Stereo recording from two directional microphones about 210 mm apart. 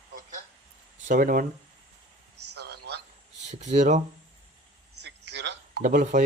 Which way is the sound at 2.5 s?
50° right (ahead or behind).